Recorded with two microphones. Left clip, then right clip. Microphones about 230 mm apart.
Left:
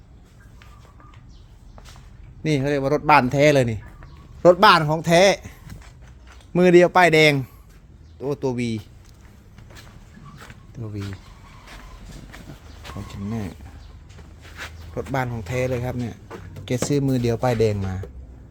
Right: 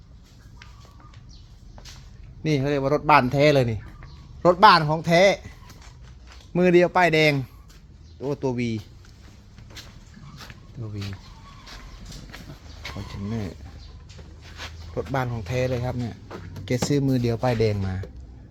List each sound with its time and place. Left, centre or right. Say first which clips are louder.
2.4 s speech: left 2 dB; centre
14.9 s speech: left 1 dB; centre